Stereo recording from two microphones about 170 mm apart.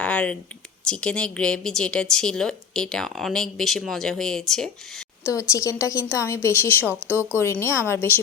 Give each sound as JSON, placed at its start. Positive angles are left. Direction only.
{"t": 0.0, "sound": "a sound", "side_deg": 5}
{"t": 0.9, "sound": "speech", "side_deg": 5}
{"t": 5.2, "sound": "a woman's voice", "side_deg": 20}
{"t": 6.8, "sound": "speech", "side_deg": -10}
{"t": 7.3, "sound": "a woman's voice", "side_deg": 15}